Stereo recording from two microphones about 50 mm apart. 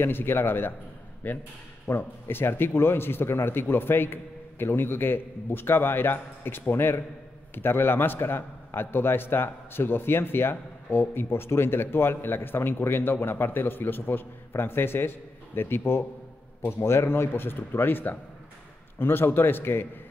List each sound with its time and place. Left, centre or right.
0.0 s a man's voice: left